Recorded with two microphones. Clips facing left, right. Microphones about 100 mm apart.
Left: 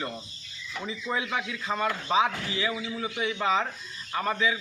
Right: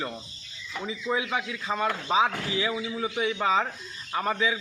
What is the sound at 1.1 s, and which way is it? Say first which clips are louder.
A man's voice: right 2 dB; 15° right (ahead or behind).